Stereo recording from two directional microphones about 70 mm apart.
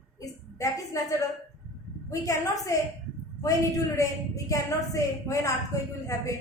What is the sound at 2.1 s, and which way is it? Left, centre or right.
Speech, left.